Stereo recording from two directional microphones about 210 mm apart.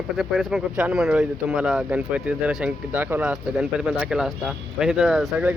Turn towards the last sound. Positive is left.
turn(degrees=-5)  # may be behind; listen again after turning